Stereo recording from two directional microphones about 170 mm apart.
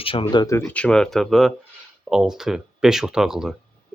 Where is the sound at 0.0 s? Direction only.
30° left (ahead or behind).